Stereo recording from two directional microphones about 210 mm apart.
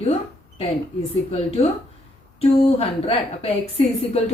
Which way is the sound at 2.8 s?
30° left (ahead or behind).